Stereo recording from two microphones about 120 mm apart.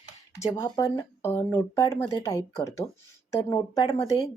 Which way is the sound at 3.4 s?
35° left (ahead or behind).